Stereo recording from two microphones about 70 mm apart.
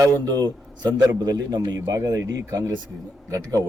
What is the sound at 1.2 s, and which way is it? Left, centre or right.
Speech, right.